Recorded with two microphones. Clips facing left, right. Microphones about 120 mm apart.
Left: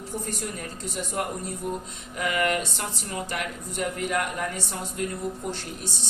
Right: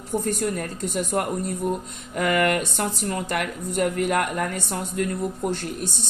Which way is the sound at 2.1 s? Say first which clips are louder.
Right 4 dB; 50° right (ahead or behind).